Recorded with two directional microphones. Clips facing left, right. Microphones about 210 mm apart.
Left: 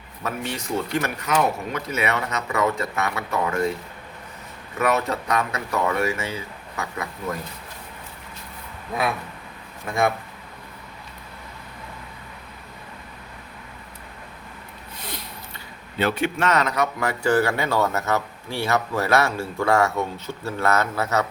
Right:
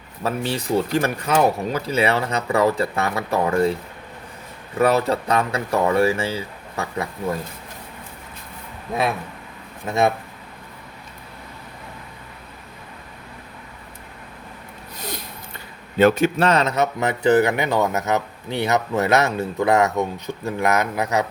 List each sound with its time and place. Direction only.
0.2 s speech: 35° right (ahead or behind)
4.8 s speech: 30° right (ahead or behind)
9.8 s speech: 25° right (ahead or behind)
16.0 s speech: 45° right (ahead or behind); by 21.2 s 15° right (ahead or behind)